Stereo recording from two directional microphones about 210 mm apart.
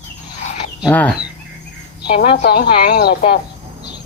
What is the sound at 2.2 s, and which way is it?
Speech, 50° left (ahead or behind).